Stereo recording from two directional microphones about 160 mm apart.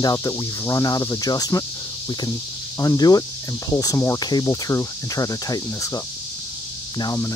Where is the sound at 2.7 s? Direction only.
25° left (ahead or behind).